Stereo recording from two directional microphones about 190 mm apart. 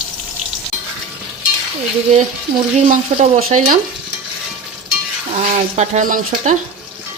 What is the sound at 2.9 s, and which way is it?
Speech, 40° right (ahead or behind).